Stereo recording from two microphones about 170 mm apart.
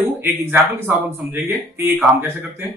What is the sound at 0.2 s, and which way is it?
Speech, 10° right (ahead or behind).